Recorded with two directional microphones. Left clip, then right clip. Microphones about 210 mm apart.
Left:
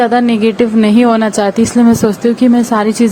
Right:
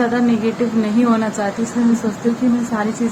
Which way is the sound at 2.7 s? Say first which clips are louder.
Left 9 dB; 55° left (ahead or behind).